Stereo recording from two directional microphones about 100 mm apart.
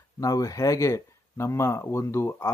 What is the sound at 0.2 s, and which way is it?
Speech, 35° left (ahead or behind).